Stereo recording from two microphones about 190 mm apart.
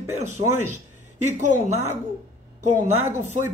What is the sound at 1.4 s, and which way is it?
Speech, 35° right (ahead or behind).